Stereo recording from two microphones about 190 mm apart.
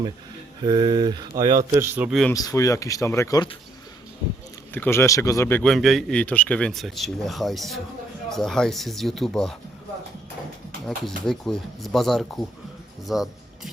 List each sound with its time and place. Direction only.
0.6 s speech: 25° right (ahead or behind)
2.0 s speech: centre (ahead or behind)
2.3 s speech: 20° left (ahead or behind)
4.7 s speech: 10° left (ahead or behind)
5.6 s speech: centre (ahead or behind)
10.8 s speech: centre (ahead or behind)
13.1 s music: centre (ahead or behind)